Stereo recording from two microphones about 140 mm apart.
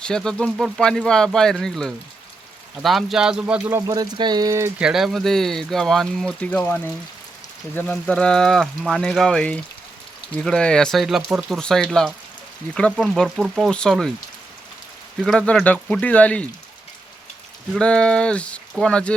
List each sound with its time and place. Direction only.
0.0 s speech: 5° left (ahead or behind); by 4.7 s 25° right (ahead or behind)
4.8 s speech: 5° right (ahead or behind)
15.2 s speech: 5° left (ahead or behind)
17.7 s speech: 5° left (ahead or behind)